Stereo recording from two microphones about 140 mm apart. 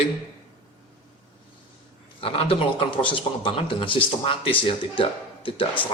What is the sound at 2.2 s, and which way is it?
Speech, 40° left (ahead or behind).